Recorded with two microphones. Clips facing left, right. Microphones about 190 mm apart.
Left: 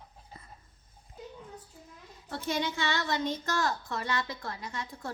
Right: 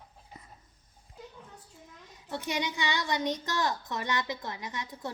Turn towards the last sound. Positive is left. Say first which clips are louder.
# even
turn(degrees=-20)  # may be behind; listen again after turning